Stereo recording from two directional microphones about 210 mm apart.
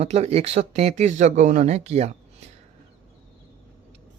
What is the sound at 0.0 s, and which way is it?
Speech, 30° right (ahead or behind).